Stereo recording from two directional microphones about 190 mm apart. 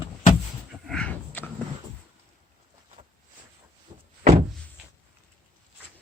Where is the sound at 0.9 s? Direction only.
5° left (ahead or behind).